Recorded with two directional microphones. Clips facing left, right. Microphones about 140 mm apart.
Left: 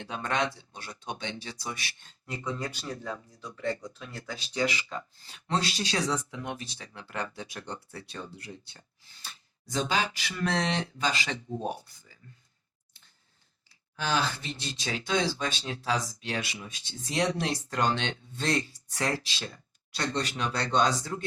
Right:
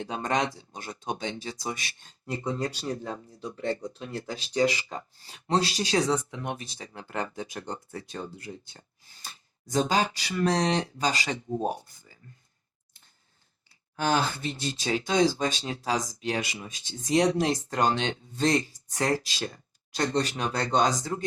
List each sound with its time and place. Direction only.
0.0 s speech: 40° right (ahead or behind)
6.1 s speech: 30° right (ahead or behind)
6.6 s speech: 45° right (ahead or behind)
13.9 s speech: 50° right (ahead or behind)